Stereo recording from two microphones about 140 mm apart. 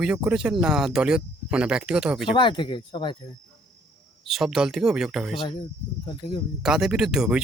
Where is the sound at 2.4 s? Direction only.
35° left (ahead or behind).